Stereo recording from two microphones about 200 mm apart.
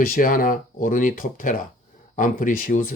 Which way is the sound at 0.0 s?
45° left (ahead or behind).